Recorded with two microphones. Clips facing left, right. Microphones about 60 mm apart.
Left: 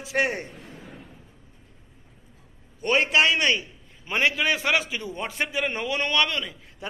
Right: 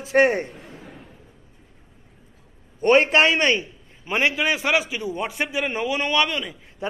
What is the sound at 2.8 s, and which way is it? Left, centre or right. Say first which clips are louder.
Speech: right 5 dB; right.